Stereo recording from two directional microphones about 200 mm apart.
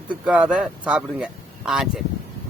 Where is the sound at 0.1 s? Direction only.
5° right (ahead or behind).